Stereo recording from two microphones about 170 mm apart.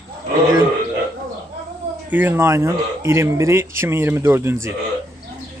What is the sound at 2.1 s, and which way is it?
Speech, 10° right (ahead or behind).